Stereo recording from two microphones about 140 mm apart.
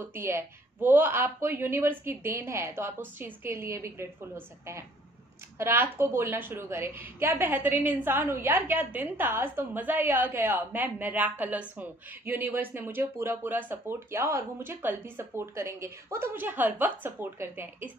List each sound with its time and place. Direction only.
0.0 s a woman's voice: 15° right (ahead or behind)